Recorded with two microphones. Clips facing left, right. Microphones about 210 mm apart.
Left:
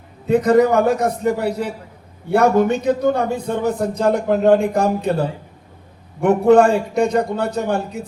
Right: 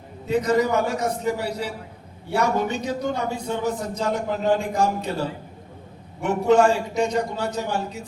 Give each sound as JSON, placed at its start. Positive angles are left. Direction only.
{"t": 0.3, "sound": "a man's voice", "side_deg": 55}
{"t": 6.2, "sound": "a man's voice", "side_deg": 55}